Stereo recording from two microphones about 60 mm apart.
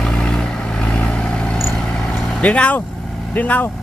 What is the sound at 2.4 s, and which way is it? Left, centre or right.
Speech, left.